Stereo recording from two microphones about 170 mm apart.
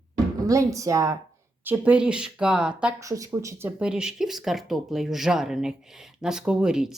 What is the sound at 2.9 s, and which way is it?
Speech, 20° right (ahead or behind).